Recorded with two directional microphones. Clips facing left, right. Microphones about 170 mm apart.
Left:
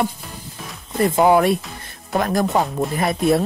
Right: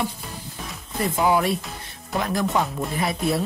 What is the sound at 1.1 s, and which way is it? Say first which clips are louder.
Speech: left 6 dB; 55° left (ahead or behind).